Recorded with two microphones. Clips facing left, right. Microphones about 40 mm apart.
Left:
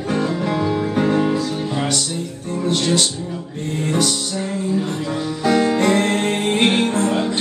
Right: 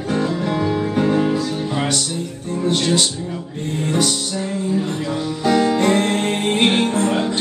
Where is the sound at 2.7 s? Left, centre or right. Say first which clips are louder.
Even; right.